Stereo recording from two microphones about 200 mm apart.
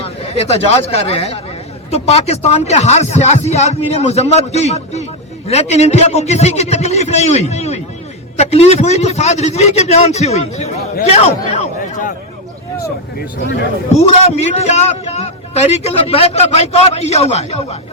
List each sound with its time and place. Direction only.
0.0 s a man's voice: 30° left (ahead or behind)
11.0 s a sound: 30° left (ahead or behind)
13.9 s a man's voice: 30° left (ahead or behind)